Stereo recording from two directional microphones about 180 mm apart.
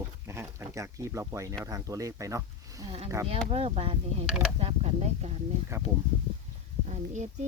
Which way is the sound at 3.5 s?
35° right (ahead or behind).